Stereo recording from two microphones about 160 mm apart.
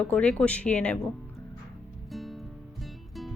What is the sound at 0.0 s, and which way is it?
Speech, 5° left (ahead or behind).